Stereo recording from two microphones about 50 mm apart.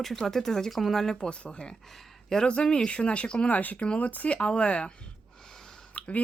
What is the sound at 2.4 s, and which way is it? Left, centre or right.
Speech, centre.